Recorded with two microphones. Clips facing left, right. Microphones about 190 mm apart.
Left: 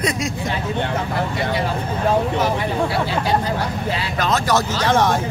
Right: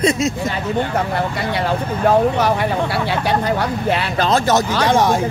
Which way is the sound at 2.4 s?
65° right (ahead or behind).